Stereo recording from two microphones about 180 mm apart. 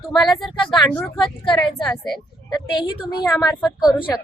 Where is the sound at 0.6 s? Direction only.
25° left (ahead or behind).